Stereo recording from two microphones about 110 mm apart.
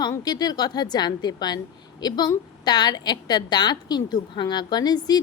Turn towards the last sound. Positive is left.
turn(degrees=40)  # may be behind; listen again after turning